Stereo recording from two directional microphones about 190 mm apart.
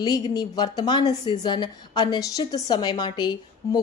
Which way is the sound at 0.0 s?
20° left (ahead or behind).